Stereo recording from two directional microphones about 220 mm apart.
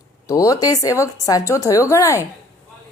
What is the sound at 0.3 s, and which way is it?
A woman's voice, 15° left (ahead or behind).